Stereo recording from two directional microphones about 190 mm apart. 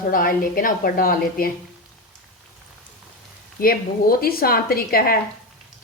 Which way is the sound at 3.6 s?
50° left (ahead or behind).